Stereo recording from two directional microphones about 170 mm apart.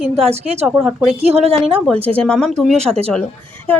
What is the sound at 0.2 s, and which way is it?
Speech, 35° right (ahead or behind).